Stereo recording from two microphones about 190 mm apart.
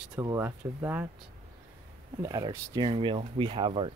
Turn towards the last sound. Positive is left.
turn(degrees=-30)  # may be behind; listen again after turning